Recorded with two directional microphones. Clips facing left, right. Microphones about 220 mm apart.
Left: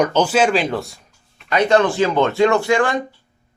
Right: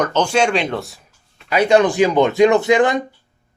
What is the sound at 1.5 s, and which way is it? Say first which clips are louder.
Speech: right 2 dB; 10° right (ahead or behind).